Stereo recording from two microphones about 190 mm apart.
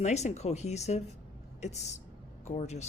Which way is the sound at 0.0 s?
35° left (ahead or behind).